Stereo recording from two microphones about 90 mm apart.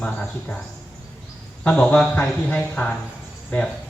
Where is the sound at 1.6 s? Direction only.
15° left (ahead or behind).